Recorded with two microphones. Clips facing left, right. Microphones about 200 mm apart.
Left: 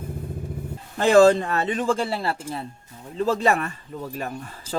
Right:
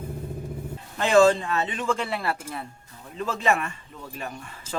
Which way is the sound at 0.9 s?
35° left (ahead or behind).